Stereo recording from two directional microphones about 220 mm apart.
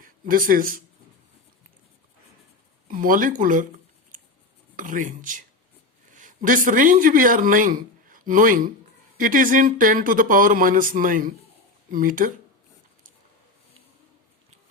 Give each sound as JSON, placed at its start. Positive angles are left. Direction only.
{"t": 0.0, "sound": "speech", "side_deg": -40}
{"t": 2.9, "sound": "speech", "side_deg": -40}
{"t": 4.8, "sound": "speech", "side_deg": -35}